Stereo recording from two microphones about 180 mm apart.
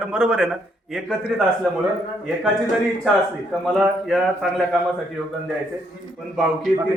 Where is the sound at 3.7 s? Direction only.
Centre (ahead or behind).